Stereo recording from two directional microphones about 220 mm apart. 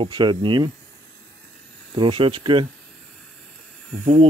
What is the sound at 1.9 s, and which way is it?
Speech, 25° right (ahead or behind).